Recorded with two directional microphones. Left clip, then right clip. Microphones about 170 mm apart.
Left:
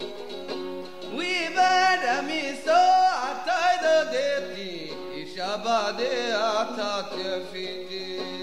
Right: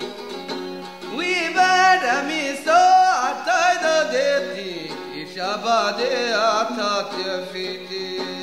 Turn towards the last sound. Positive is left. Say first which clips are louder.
# right 4 dB
turn(degrees=15)  # may be behind; listen again after turning